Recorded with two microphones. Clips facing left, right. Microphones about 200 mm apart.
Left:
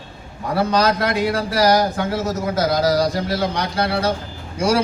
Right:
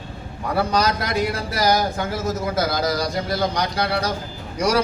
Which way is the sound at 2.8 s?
30° left (ahead or behind).